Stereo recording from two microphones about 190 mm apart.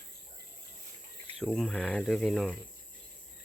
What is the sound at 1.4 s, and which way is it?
Speech, centre (ahead or behind).